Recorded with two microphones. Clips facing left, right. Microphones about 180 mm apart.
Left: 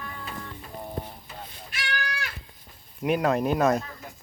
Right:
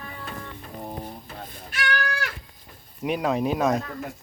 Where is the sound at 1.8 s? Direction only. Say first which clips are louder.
Right 5 dB; 65° right (ahead or behind).